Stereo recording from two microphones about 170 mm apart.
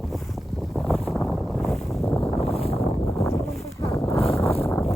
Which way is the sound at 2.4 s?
35° left (ahead or behind).